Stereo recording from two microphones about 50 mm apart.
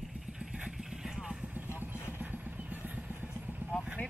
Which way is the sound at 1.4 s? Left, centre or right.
Right.